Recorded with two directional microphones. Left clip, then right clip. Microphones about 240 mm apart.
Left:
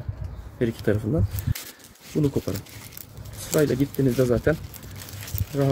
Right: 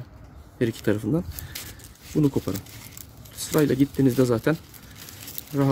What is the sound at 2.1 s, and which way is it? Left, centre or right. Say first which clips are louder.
Speech: right 2 dB; right.